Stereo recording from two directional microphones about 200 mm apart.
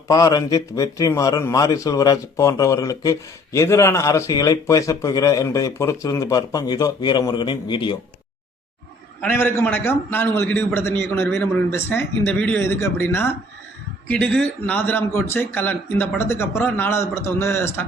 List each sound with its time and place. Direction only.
0.1 s a man's voice: 20° left (ahead or behind)
9.2 s a man's voice: 10° left (ahead or behind)